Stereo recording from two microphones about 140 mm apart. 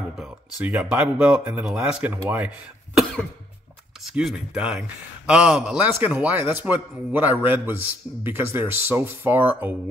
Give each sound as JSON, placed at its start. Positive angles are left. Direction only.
{"t": 0.2, "sound": "a man's voice", "side_deg": -10}